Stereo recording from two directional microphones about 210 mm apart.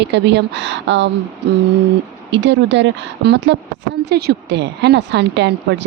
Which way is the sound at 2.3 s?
55° right (ahead or behind).